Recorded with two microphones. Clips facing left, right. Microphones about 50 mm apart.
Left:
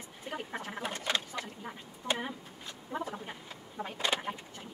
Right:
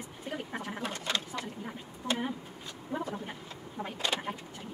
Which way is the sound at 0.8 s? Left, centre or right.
Centre.